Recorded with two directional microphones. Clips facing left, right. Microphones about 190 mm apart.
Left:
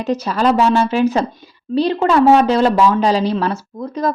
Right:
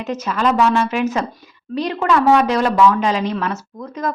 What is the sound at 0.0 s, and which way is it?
A woman's voice, 35° left (ahead or behind).